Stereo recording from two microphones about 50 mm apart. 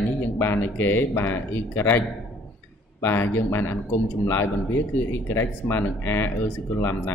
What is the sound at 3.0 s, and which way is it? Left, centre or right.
Speech, left.